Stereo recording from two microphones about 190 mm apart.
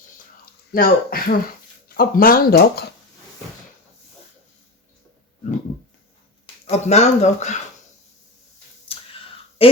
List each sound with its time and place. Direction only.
0.7 s speech: 50° left (ahead or behind)
6.4 s speech: 35° left (ahead or behind)
8.9 s a sound: 30° left (ahead or behind)
9.6 s speech: 30° left (ahead or behind)